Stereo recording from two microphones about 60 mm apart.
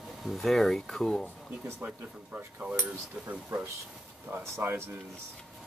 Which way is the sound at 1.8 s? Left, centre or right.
Right.